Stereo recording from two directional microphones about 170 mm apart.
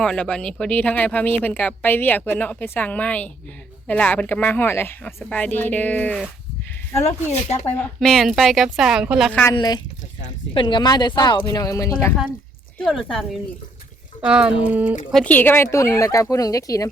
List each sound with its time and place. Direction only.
0.0 s speech: 5° left (ahead or behind)
7.0 s speech: 35° left (ahead or behind)
7.7 s a woman's voice: 5° left (ahead or behind)
9.6 s speech: 25° left (ahead or behind)
14.2 s speech: 5° right (ahead or behind)
15.1 s speech: 10° left (ahead or behind)